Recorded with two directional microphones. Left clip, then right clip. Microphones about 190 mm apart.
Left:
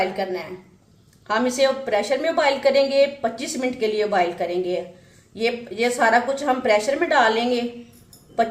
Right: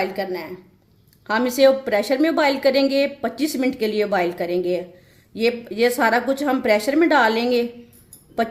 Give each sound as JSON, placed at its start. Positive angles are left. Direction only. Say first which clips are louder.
{"t": 0.0, "sound": "a woman's voice", "louder": "left 1 dB", "side_deg": -50}